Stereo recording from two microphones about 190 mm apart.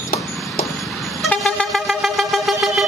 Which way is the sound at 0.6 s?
Centre (ahead or behind).